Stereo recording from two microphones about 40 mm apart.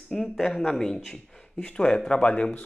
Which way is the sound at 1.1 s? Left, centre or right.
Left.